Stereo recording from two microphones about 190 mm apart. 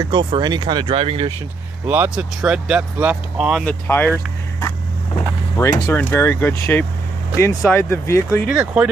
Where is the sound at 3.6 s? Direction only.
10° left (ahead or behind).